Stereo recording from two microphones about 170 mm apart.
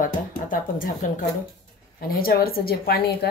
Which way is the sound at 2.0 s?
60° left (ahead or behind).